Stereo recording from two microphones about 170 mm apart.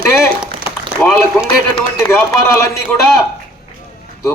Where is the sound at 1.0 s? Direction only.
Centre (ahead or behind).